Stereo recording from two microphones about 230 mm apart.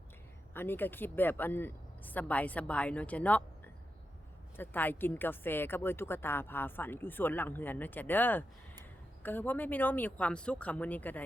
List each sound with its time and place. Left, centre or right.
0.5 s a woman's voice: centre
4.5 s a woman's voice: centre